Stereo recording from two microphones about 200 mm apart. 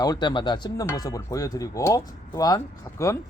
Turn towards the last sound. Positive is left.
turn(degrees=15)  # may be behind; listen again after turning